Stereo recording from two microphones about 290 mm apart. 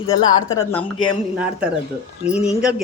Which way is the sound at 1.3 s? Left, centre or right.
Centre.